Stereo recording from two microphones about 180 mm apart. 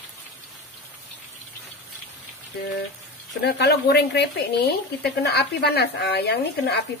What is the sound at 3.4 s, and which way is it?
Speech, 65° left (ahead or behind).